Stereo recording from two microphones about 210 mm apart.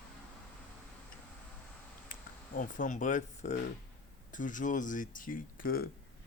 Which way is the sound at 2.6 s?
40° left (ahead or behind).